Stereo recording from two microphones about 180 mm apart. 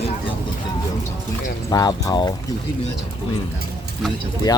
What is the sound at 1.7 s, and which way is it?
Speech, 20° left (ahead or behind).